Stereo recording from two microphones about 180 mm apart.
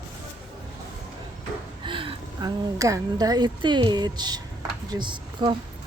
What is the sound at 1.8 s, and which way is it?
A woman's voice, 30° right (ahead or behind).